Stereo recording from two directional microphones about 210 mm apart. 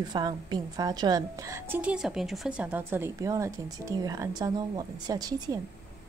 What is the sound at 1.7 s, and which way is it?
Speech, 5° right (ahead or behind).